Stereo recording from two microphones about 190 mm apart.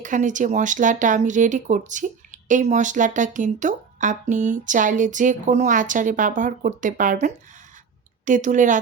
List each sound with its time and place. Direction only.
0.0 s speech: 40° right (ahead or behind)